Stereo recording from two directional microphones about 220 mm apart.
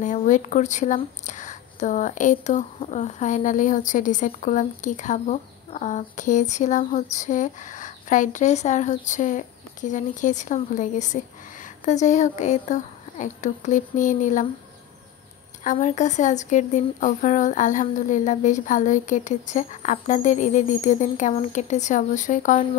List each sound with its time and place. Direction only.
0.0 s speech: 35° left (ahead or behind)
15.6 s speech: 35° left (ahead or behind)